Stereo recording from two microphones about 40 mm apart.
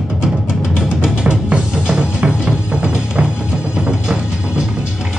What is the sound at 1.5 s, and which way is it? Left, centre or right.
Music, centre.